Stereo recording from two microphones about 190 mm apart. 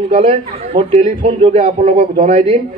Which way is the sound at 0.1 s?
30° right (ahead or behind).